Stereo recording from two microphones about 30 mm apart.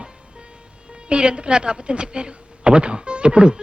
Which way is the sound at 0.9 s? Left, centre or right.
Right.